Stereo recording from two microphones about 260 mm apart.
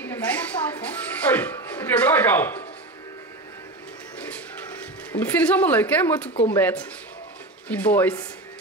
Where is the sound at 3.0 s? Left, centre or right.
Centre.